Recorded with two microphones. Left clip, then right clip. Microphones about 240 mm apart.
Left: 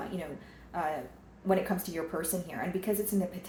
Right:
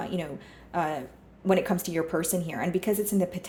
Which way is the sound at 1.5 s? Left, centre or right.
Right.